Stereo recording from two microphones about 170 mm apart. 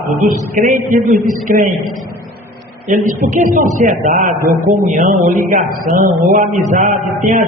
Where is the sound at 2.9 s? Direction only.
45° right (ahead or behind).